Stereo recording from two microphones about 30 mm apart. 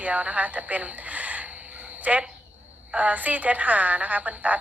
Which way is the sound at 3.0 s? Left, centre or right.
Right.